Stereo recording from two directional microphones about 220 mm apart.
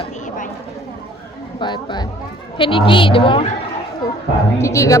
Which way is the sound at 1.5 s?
20° left (ahead or behind).